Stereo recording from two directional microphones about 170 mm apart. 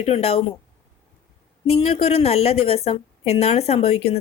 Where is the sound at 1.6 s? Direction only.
35° left (ahead or behind).